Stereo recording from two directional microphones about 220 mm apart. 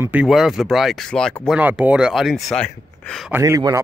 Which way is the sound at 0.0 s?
5° right (ahead or behind).